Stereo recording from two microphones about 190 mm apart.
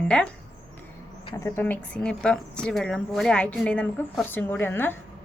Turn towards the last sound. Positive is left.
turn(degrees=10)  # may be behind; listen again after turning